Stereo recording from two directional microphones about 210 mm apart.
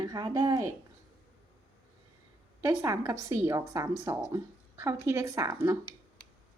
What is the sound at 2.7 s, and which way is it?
A woman's voice, 15° right (ahead or behind).